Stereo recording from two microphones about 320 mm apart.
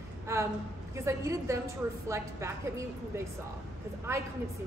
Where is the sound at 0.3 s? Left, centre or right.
Centre.